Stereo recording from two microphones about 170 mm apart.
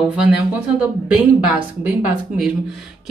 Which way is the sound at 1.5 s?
10° right (ahead or behind).